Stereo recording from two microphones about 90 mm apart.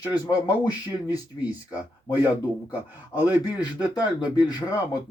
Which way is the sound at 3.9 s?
50° left (ahead or behind).